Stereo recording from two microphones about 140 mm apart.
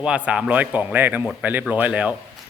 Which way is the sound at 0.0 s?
5° right (ahead or behind).